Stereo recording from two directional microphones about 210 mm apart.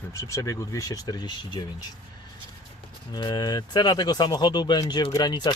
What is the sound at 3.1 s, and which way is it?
Speech, 20° left (ahead or behind).